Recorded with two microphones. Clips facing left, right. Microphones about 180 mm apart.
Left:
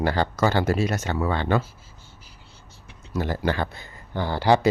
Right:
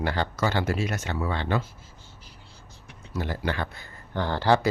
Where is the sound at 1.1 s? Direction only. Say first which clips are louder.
Left 4 dB; 55° left (ahead or behind).